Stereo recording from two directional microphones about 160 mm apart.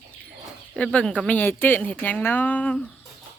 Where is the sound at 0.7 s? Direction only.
5° left (ahead or behind).